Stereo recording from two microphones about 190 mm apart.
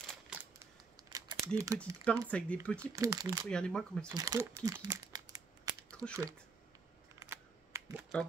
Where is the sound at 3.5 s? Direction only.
5° left (ahead or behind).